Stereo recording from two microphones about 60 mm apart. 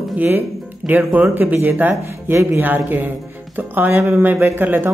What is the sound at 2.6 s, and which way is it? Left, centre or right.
Speech, right.